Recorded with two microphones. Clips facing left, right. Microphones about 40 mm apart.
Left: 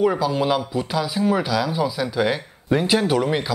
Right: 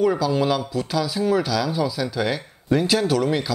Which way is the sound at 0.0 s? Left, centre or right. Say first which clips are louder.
Even; centre.